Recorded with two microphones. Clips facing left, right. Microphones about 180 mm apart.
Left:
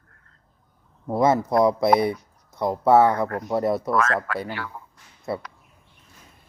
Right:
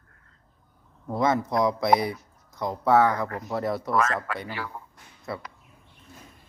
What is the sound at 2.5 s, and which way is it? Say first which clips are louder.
Speech: left 4 dB; 25° left (ahead or behind).